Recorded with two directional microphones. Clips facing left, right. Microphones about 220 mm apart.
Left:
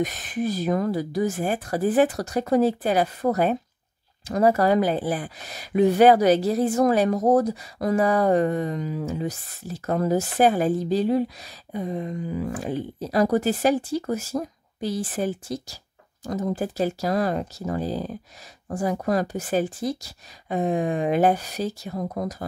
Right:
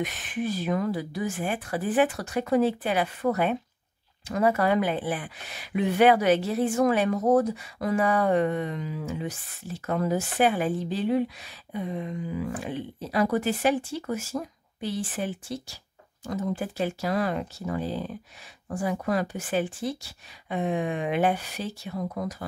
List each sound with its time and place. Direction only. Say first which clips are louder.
0.0 s speech: left 4 dB; 40° left (ahead or behind)